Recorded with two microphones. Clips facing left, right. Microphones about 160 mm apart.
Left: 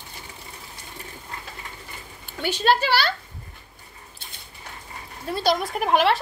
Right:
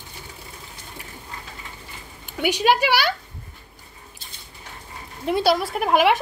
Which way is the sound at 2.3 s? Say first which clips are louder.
Right 2 dB; 15° right (ahead or behind).